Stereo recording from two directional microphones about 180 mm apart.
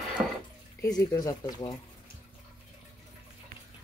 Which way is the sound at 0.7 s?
20° left (ahead or behind).